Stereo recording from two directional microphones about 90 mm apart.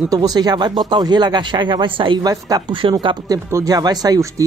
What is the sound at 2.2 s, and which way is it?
Speech, 45° right (ahead or behind).